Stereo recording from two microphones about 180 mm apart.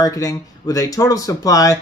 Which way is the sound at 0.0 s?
20° left (ahead or behind).